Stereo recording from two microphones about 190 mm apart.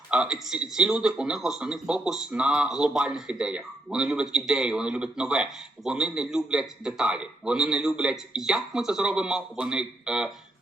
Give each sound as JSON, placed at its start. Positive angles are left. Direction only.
{"t": 0.1, "sound": "a man's voice", "side_deg": -5}